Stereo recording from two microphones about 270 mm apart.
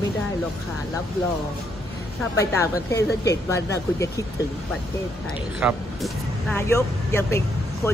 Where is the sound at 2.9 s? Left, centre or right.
Left.